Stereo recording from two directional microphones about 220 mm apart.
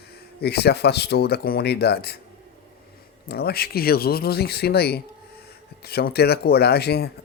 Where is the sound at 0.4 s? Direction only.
45° left (ahead or behind).